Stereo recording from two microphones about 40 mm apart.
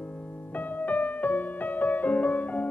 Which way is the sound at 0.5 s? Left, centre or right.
Left.